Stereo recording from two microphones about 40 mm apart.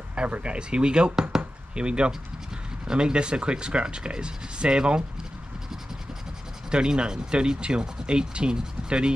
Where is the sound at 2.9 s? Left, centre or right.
Right.